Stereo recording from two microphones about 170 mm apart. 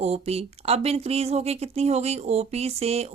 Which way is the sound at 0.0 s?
35° right (ahead or behind).